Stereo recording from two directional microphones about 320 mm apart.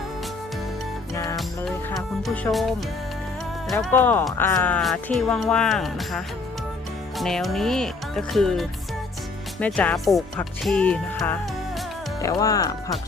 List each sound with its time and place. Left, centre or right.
1.1 s music: centre
3.7 s speech: centre